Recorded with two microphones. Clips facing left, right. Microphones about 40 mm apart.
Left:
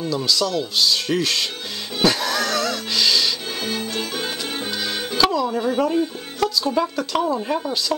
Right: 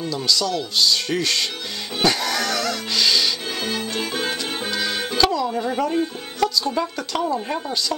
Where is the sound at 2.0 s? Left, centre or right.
Centre.